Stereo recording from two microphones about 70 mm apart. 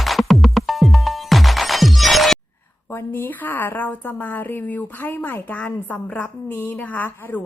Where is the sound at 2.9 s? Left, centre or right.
Left.